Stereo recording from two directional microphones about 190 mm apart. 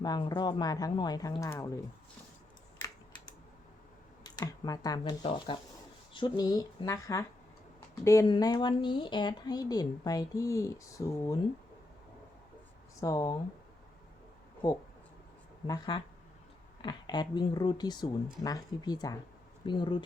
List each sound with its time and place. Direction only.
0.0 s speech: 20° left (ahead or behind)
4.2 s speech: 20° left (ahead or behind)
13.0 s speech: 20° left (ahead or behind)
15.6 s speech: 20° left (ahead or behind)